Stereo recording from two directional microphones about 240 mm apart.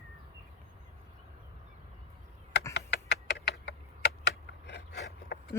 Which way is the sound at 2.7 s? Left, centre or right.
Left.